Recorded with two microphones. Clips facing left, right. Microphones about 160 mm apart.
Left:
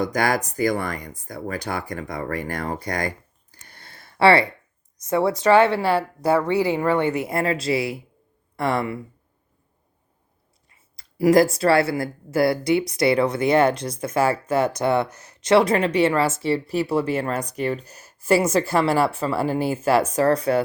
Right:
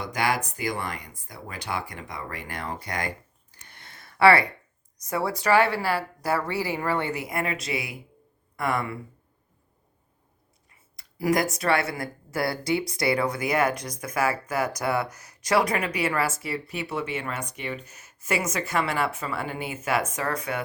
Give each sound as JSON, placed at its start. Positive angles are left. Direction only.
{"t": 0.0, "sound": "speech", "side_deg": 45}
{"t": 3.7, "sound": "a sound", "side_deg": 35}
{"t": 5.0, "sound": "a woman's voice", "side_deg": 25}
{"t": 10.9, "sound": "a woman's voice", "side_deg": 30}